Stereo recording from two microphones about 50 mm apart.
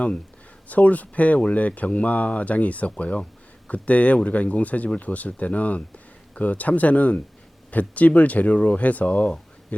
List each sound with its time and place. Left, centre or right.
0.7 s speech: left